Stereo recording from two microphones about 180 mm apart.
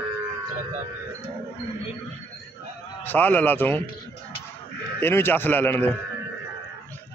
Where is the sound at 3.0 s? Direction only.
10° left (ahead or behind).